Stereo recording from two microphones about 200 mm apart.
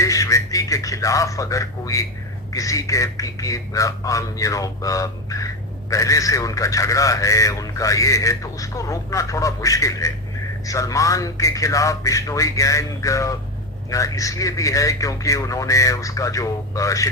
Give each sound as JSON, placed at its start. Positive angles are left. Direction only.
{"t": 0.0, "sound": "radio", "side_deg": 15}
{"t": 2.5, "sound": "speech", "side_deg": 15}